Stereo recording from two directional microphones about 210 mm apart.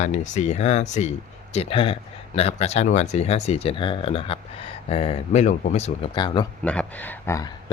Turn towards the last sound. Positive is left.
turn(degrees=15)  # may be behind; listen again after turning